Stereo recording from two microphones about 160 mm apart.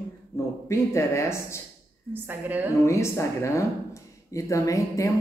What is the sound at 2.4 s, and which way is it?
Speech, 10° right (ahead or behind).